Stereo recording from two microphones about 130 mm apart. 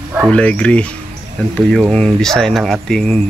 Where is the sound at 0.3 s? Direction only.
10° left (ahead or behind).